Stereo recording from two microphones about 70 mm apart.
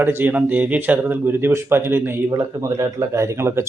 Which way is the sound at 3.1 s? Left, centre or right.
Right.